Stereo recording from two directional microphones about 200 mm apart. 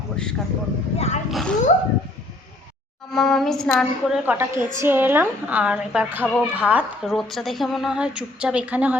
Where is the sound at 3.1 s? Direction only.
Centre (ahead or behind).